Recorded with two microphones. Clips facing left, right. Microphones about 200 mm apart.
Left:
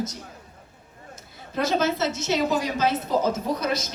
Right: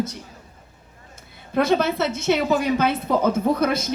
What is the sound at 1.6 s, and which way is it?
A woman's voice, 60° right (ahead or behind).